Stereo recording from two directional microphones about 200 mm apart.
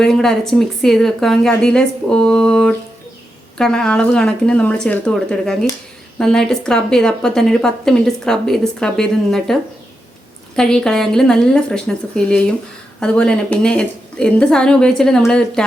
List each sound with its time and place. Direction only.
0.0 s speech: centre (ahead or behind)